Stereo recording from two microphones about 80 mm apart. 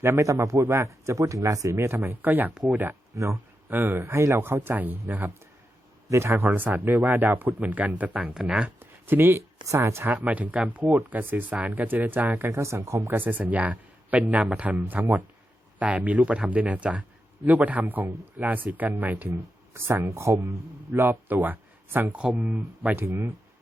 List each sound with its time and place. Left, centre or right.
0.0 s a man's voice: right
2.2 s speech: right
3.1 s a man's voice: right
3.7 s speech: right
9.0 s speech: right
12.5 s a man's voice: right
13.1 s speech: right
23.0 s a man's voice: right